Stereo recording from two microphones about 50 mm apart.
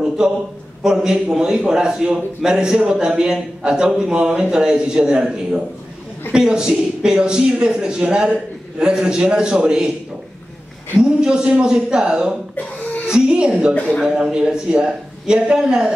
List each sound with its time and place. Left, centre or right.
0.2 s a man's voice: centre
11.0 s a man's voice: centre
12.5 s a sound: left
13.0 s a woman's voice: centre